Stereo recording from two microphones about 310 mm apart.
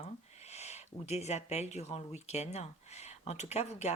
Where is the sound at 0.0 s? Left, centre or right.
Left.